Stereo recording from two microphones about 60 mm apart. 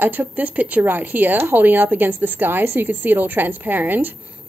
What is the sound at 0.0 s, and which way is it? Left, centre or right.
A woman's voice, right.